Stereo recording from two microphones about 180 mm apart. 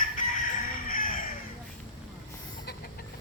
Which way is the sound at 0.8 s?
50° left (ahead or behind).